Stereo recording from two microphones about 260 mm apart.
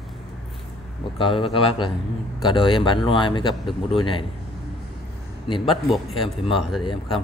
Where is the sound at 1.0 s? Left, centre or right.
Centre.